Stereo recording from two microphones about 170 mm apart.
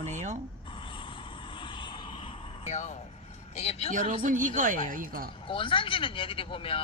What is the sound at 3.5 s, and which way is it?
Speech, 35° left (ahead or behind).